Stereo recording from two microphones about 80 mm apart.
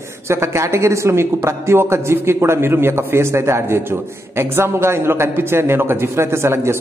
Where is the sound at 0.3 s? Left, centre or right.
Right.